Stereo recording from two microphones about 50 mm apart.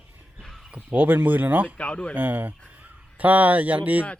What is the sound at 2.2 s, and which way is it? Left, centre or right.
Speech, right.